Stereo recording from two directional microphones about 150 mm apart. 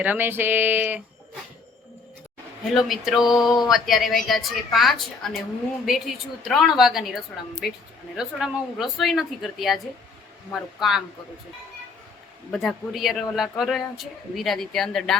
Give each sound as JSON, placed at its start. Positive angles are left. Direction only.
{"t": 0.0, "sound": "a sound", "side_deg": -10}
{"t": 2.7, "sound": "speech", "side_deg": 0}
{"t": 3.4, "sound": "a sound", "side_deg": 25}
{"t": 3.7, "sound": "speech", "side_deg": 0}
{"t": 6.4, "sound": "speech", "side_deg": 0}
{"t": 12.5, "sound": "speech", "side_deg": 0}